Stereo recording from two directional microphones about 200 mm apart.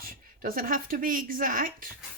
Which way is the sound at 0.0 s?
45° right (ahead or behind).